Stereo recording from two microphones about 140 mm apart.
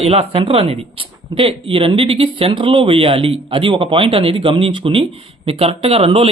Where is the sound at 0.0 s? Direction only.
45° right (ahead or behind).